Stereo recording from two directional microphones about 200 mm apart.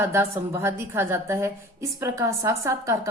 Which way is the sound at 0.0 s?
15° right (ahead or behind).